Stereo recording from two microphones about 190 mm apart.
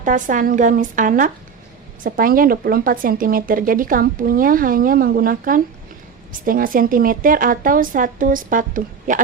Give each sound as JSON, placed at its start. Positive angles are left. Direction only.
{"t": 0.0, "sound": "speech", "side_deg": -45}